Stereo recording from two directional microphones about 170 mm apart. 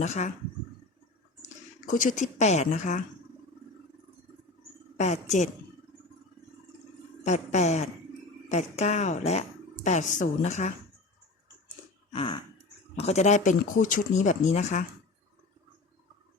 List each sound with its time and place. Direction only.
0.0 s speech: 40° left (ahead or behind)
1.9 s speech: 50° left (ahead or behind)
4.9 s a woman's voice: 40° left (ahead or behind)
7.3 s speech: 40° left (ahead or behind)
12.1 s speech: 30° left (ahead or behind)